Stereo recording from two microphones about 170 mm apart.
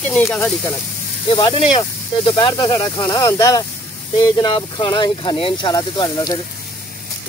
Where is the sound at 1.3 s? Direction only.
25° left (ahead or behind).